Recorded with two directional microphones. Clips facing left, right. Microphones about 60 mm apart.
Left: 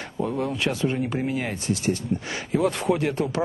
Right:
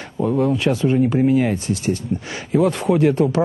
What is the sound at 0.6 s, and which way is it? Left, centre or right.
Speech, centre.